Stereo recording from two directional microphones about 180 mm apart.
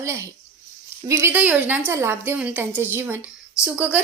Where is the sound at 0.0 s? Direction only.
15° right (ahead or behind).